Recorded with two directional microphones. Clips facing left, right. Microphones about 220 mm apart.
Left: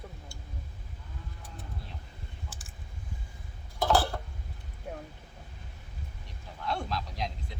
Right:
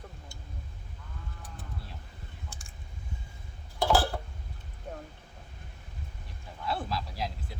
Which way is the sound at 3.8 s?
Centre (ahead or behind).